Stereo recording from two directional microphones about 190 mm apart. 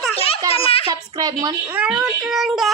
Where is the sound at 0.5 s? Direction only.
30° left (ahead or behind).